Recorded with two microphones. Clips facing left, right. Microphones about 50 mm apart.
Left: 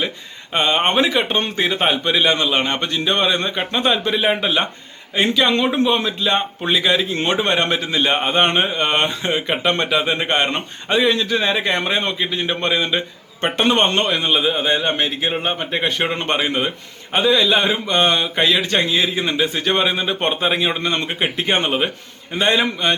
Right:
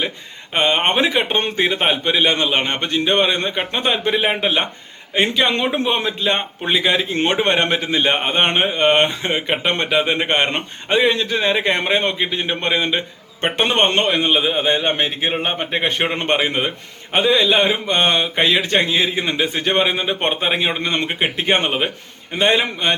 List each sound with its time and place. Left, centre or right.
0.5 s a man's voice: centre